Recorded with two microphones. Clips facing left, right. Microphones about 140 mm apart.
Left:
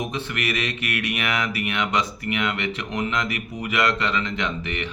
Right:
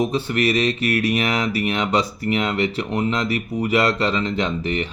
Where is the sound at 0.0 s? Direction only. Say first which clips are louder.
Right 8 dB; 30° right (ahead or behind).